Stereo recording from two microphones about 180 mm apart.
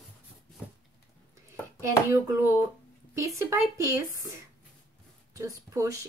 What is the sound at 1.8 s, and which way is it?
Speech, 15° right (ahead or behind).